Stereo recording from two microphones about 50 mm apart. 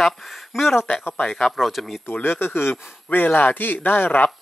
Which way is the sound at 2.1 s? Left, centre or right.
Left.